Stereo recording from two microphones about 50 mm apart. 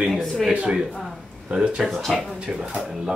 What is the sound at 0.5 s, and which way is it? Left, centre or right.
Speech, right.